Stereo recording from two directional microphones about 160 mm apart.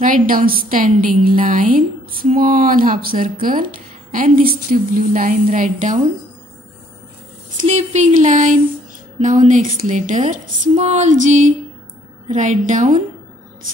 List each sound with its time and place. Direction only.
0.0 s a woman's voice: 60° right (ahead or behind)
7.5 s speech: 45° right (ahead or behind)